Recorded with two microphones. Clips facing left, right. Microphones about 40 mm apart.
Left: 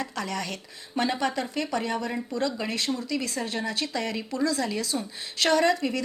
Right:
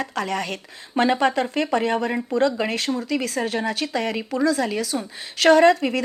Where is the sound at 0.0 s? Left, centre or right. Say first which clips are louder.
Right 6 dB; right.